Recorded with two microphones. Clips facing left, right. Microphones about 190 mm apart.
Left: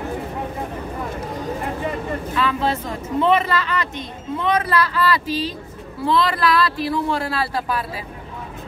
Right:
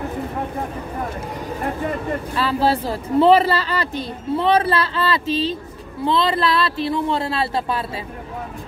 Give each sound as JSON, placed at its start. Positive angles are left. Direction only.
{"t": 2.3, "sound": "speech", "side_deg": -35}